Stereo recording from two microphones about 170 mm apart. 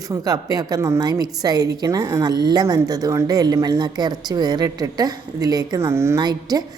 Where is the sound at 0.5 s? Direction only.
20° right (ahead or behind).